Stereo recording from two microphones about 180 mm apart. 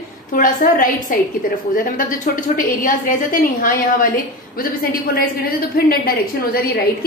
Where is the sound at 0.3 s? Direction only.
50° left (ahead or behind).